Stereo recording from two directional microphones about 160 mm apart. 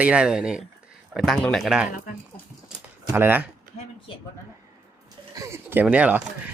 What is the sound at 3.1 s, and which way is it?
Speech, 10° right (ahead or behind).